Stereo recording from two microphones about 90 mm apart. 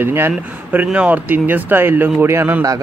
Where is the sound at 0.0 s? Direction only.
25° right (ahead or behind).